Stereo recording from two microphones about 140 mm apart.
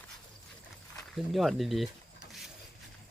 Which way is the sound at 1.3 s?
Centre (ahead or behind).